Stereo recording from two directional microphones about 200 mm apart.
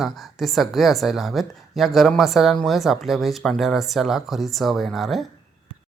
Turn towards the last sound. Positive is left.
turn(degrees=0)  # may be behind; listen again after turning